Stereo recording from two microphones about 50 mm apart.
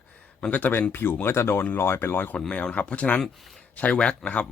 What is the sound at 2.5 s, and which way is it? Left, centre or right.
Speech, left.